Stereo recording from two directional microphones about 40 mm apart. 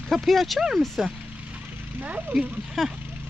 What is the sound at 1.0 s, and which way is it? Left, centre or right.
Speech, centre.